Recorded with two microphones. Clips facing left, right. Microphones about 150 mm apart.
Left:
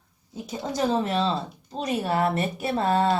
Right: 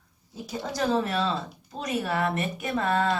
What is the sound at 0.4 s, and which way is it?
Speech, 20° left (ahead or behind).